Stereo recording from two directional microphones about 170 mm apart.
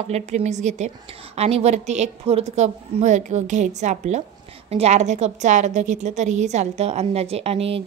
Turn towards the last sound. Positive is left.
turn(degrees=-35)  # may be behind; listen again after turning